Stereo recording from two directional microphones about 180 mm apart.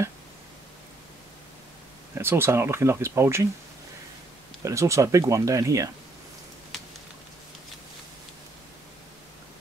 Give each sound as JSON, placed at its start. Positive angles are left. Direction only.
{"t": 2.1, "sound": "speech", "side_deg": -15}
{"t": 4.6, "sound": "speech", "side_deg": -15}
{"t": 6.7, "sound": "a sound", "side_deg": 0}